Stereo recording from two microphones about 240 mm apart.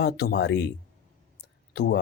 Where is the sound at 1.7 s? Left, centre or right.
Left.